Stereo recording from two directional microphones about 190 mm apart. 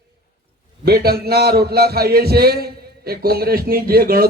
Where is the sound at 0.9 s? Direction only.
55° right (ahead or behind).